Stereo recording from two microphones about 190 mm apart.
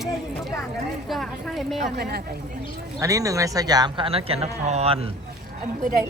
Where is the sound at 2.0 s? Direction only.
55° right (ahead or behind).